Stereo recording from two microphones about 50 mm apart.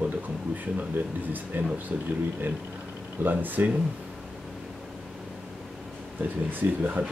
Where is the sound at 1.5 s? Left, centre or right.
Right.